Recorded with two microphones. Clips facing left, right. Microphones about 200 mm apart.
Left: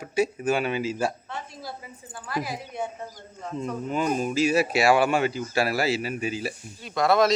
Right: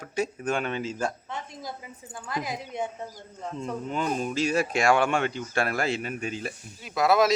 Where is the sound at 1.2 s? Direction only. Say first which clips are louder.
Even; 20° right (ahead or behind).